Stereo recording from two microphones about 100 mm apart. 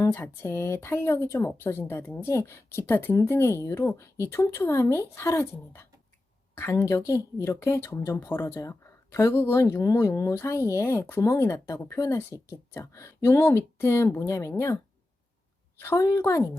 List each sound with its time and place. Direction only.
0.0 s speech: 25° left (ahead or behind)
15.8 s a woman's voice: 30° left (ahead or behind)